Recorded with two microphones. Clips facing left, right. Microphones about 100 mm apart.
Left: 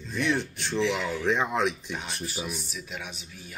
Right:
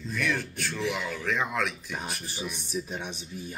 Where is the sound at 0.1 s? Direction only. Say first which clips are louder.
Left 3 dB; 25° left (ahead or behind).